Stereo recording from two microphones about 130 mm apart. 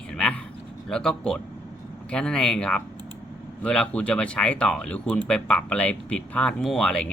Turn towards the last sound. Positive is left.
turn(degrees=5)  # may be behind; listen again after turning